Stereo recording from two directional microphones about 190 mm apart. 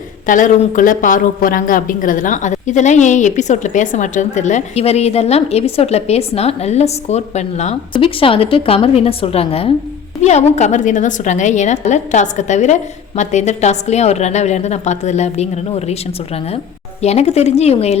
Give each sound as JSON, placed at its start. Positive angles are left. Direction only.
{"t": 0.3, "sound": "a woman's voice", "side_deg": 40}